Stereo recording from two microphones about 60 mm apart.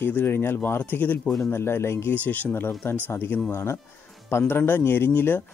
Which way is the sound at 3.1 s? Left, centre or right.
Left.